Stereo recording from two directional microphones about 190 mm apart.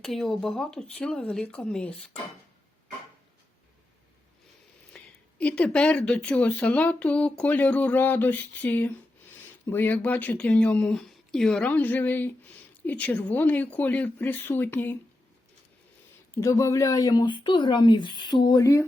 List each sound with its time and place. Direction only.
0.0 s speech: centre (ahead or behind)
4.9 s speech: 5° left (ahead or behind)
16.3 s speech: 15° left (ahead or behind)